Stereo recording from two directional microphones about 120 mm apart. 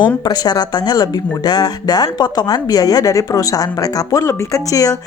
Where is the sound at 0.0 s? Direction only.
35° left (ahead or behind).